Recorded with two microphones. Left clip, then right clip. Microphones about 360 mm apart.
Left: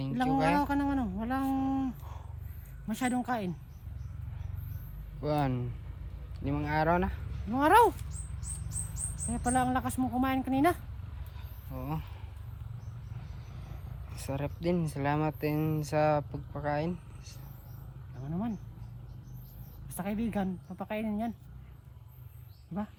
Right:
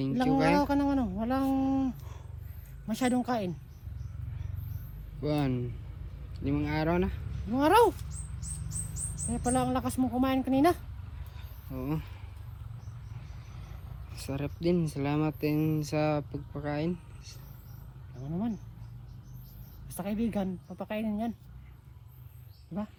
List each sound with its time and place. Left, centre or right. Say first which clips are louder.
0.0 s a woman's voice: right 2 dB; centre
5.2 s speech: even; centre
9.3 s a woman's voice: even; centre
14.3 s speech: right 2 dB; centre
19.9 s a woman's voice: right 2 dB; centre